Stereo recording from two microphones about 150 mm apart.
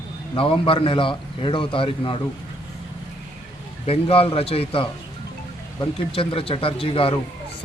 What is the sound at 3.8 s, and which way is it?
A man's voice, 40° left (ahead or behind).